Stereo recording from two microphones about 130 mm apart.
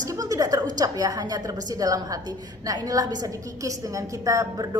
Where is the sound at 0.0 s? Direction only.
25° right (ahead or behind).